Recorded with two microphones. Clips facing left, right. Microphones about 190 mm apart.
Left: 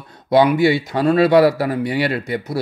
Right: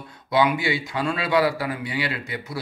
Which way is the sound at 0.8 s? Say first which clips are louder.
Left 11 dB; 35° left (ahead or behind).